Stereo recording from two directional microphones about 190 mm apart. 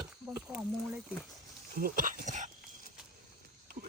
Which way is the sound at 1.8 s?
50° right (ahead or behind).